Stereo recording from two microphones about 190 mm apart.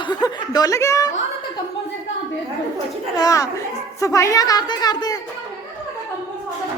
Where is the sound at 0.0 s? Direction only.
20° left (ahead or behind).